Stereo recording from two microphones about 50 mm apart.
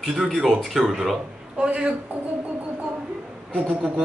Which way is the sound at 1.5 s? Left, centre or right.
Right.